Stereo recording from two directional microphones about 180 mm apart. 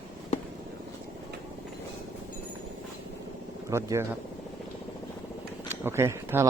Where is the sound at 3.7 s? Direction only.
15° right (ahead or behind).